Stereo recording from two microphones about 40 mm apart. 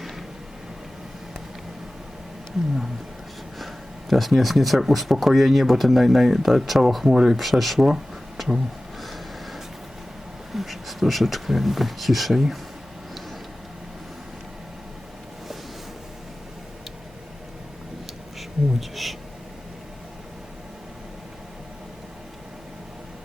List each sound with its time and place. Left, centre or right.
4.1 s speech: centre
9.0 s gasp: centre
10.5 s speech: centre
18.3 s a sound: centre